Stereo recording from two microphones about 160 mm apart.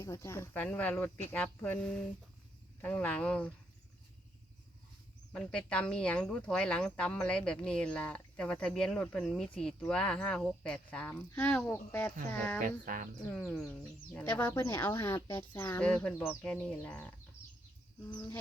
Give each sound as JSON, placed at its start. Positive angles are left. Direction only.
{"t": 0.0, "sound": "speech", "side_deg": 15}
{"t": 5.3, "sound": "speech", "side_deg": 5}
{"t": 12.5, "sound": "speech", "side_deg": -60}
{"t": 13.5, "sound": "speech", "side_deg": 5}
{"t": 15.1, "sound": "speech", "side_deg": 30}
{"t": 15.5, "sound": "speech", "side_deg": 15}